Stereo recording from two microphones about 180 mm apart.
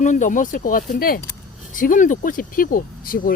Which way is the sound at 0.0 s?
45° left (ahead or behind).